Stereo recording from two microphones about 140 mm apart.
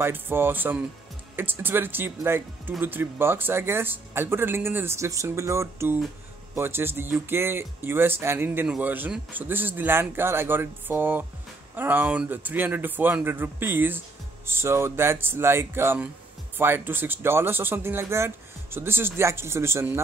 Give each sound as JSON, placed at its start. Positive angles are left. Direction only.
{"t": 0.0, "sound": "a man's voice", "side_deg": -15}